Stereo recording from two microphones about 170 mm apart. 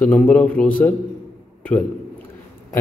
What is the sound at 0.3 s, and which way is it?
Speech, 10° left (ahead or behind).